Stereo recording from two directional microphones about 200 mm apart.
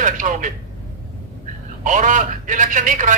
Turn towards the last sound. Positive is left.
turn(degrees=-40)  # may be behind; listen again after turning